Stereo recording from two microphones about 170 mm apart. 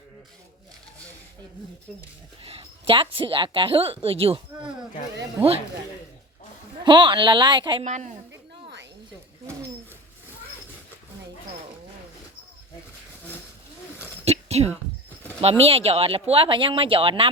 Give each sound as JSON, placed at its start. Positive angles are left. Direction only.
{"t": 2.4, "sound": "a woman's voice", "side_deg": -35}
{"t": 6.8, "sound": "speech", "side_deg": -30}
{"t": 7.9, "sound": "a woman's voice", "side_deg": -45}
{"t": 8.3, "sound": "a sound", "side_deg": -90}
{"t": 14.3, "sound": "a sound", "side_deg": -40}
{"t": 15.4, "sound": "a woman's voice", "side_deg": -35}